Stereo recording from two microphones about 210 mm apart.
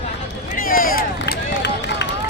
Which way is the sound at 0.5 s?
40° left (ahead or behind).